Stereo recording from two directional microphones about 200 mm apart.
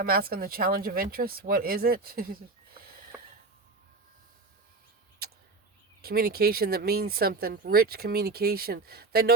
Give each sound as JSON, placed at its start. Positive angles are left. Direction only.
{"t": 0.0, "sound": "speech", "side_deg": -50}
{"t": 3.1, "sound": "a sound", "side_deg": -10}
{"t": 6.0, "sound": "speech", "side_deg": -50}